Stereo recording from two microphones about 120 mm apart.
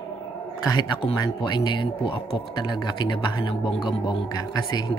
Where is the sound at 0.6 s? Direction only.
35° left (ahead or behind).